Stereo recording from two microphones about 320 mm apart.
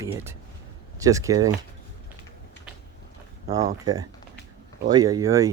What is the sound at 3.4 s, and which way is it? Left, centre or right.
Speech, centre.